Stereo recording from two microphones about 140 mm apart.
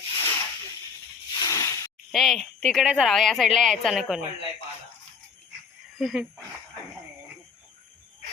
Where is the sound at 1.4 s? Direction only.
25° left (ahead or behind).